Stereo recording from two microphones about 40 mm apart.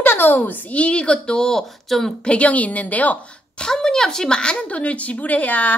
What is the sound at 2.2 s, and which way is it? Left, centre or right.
Speech, left.